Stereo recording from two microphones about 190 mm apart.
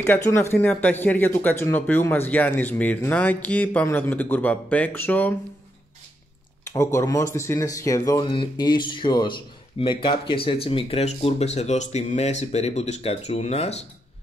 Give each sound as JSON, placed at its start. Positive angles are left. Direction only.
{"t": 0.0, "sound": "speech", "side_deg": 10}
{"t": 6.6, "sound": "speech", "side_deg": 15}